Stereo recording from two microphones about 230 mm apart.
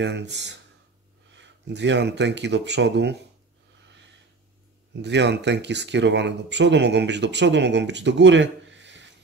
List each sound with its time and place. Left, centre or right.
0.0 s speech: right
5.0 s speech: right